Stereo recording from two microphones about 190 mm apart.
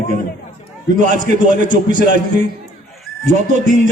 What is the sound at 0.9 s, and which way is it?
A man's voice, 40° right (ahead or behind).